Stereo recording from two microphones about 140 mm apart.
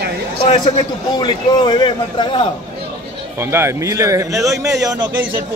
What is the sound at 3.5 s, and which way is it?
A man's voice, 20° right (ahead or behind).